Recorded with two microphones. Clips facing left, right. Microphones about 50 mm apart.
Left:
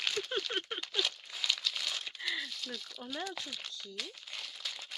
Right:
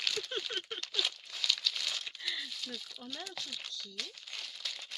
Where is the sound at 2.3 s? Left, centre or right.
Centre.